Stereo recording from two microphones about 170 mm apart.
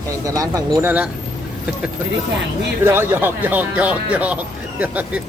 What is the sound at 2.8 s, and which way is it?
Speech, 15° right (ahead or behind).